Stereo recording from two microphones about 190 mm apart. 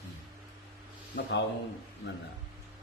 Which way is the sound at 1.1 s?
65° left (ahead or behind).